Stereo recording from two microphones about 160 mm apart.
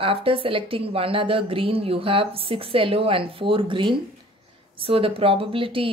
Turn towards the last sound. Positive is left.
turn(degrees=-35)  # may be behind; listen again after turning